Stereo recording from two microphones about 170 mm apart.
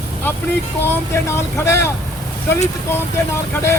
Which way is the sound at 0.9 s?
15° left (ahead or behind).